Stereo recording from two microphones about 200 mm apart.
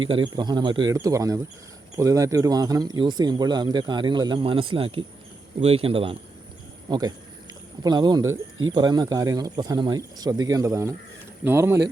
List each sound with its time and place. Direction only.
0.2 s speech: 20° right (ahead or behind)
8.3 s speech: 80° right
8.7 s speech: 20° right (ahead or behind)